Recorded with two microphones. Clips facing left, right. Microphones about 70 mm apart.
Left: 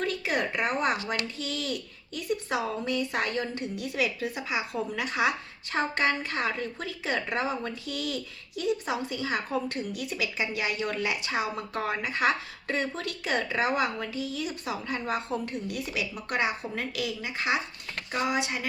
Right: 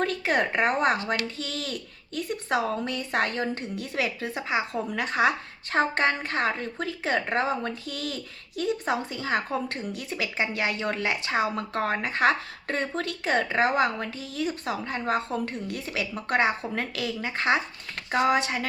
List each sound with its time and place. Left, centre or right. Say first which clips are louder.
0.0 s speech: right 4 dB; right